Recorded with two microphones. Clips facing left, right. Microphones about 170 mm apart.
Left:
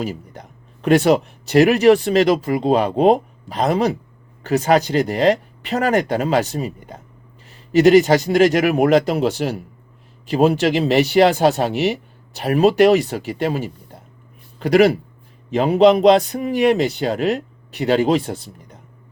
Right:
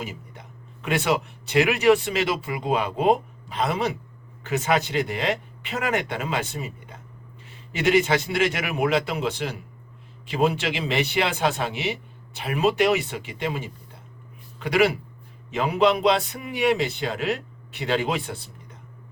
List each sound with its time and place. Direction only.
0.0 s speech: 35° left (ahead or behind)